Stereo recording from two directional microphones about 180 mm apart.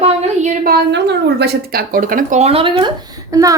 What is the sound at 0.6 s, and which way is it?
A woman's voice, 65° right (ahead or behind).